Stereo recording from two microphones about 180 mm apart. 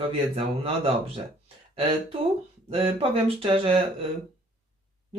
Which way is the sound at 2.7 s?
30° right (ahead or behind).